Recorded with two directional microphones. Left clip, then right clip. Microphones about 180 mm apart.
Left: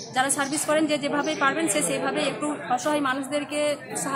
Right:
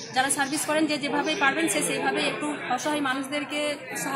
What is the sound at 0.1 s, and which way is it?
A woman's voice, 15° left (ahead or behind).